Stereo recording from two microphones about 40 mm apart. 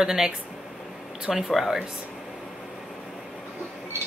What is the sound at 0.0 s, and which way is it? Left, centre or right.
Speech, centre.